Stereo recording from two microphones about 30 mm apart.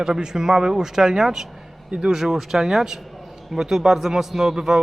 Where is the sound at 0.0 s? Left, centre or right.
Right.